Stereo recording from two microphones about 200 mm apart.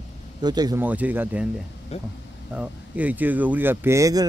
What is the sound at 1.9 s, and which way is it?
Speech, 30° left (ahead or behind).